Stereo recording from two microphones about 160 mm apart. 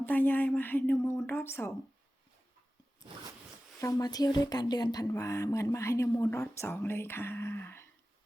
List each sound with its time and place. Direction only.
0.0 s speech: 10° left (ahead or behind)
3.8 s speech: 20° left (ahead or behind)